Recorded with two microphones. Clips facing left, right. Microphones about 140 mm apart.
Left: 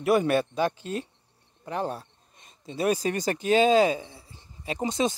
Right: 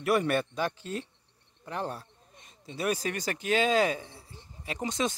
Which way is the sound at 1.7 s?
20° left (ahead or behind).